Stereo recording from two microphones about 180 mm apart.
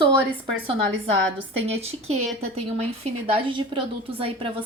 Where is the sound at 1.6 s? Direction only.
35° right (ahead or behind).